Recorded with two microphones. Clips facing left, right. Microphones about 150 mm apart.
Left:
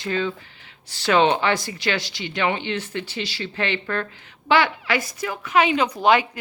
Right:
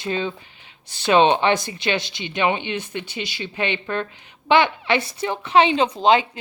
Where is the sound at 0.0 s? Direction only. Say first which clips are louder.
Even; 20° right (ahead or behind).